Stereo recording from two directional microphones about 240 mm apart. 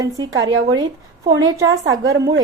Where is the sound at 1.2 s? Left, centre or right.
Centre.